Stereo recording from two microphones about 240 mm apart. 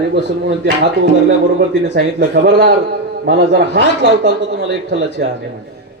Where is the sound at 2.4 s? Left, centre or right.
Right.